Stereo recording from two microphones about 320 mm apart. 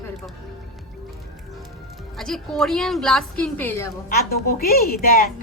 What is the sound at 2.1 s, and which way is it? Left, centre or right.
A woman's voice, centre.